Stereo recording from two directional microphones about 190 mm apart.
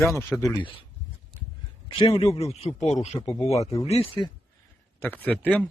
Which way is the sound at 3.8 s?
30° left (ahead or behind).